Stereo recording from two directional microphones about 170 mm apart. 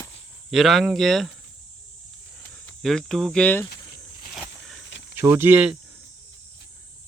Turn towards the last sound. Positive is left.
turn(degrees=-10)  # may be behind; listen again after turning